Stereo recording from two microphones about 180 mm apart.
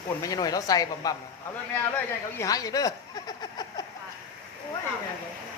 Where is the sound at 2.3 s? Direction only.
20° left (ahead or behind).